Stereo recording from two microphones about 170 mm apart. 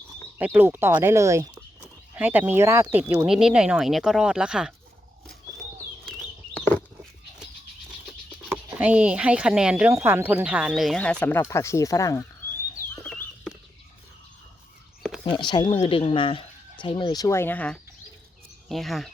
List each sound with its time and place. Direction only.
0.3 s speech: 10° right (ahead or behind)
3.2 s speech: 5° right (ahead or behind)
8.4 s speech: 10° right (ahead or behind); by 12.2 s 20° left (ahead or behind)
15.2 s speech: 25° left (ahead or behind); by 19.1 s centre (ahead or behind)